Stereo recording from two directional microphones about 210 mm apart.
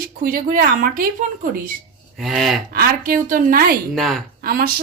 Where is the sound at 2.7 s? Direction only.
40° right (ahead or behind).